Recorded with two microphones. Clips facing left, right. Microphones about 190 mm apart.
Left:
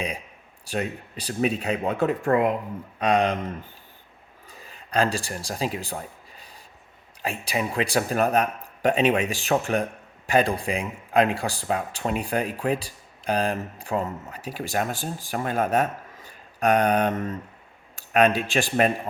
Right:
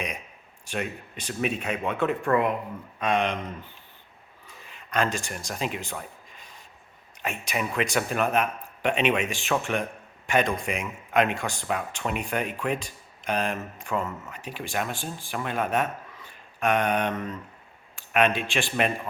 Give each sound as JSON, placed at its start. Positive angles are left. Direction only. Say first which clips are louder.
{"t": 0.6, "sound": "speech", "louder": "left 3 dB", "side_deg": 35}
{"t": 4.4, "sound": "a sound", "louder": "left 2 dB", "side_deg": 35}
{"t": 7.2, "sound": "speech", "louder": "left 3 dB", "side_deg": 30}